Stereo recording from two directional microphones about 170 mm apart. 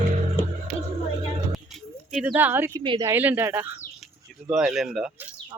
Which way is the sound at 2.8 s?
30° right (ahead or behind).